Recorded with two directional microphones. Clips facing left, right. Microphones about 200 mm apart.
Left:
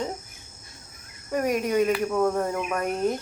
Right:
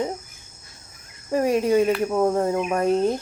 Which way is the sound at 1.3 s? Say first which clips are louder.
Right 5 dB; 30° right (ahead or behind).